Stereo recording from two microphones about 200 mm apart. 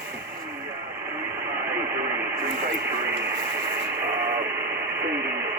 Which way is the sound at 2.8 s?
10° right (ahead or behind).